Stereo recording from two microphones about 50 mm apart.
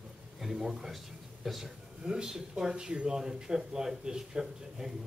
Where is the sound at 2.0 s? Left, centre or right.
Centre.